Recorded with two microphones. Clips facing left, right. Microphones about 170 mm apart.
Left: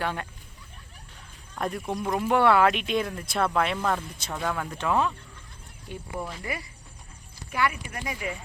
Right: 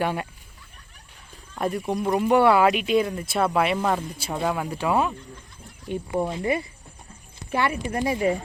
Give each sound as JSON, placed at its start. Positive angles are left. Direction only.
{"t": 0.0, "sound": "speech", "side_deg": -10}
{"t": 1.5, "sound": "speech", "side_deg": -5}
{"t": 5.9, "sound": "speech", "side_deg": -25}